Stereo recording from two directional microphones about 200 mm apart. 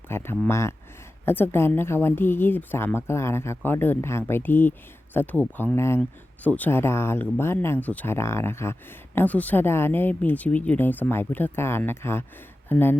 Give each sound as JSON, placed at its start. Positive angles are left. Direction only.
{"t": 0.1, "sound": "a woman's voice", "side_deg": 10}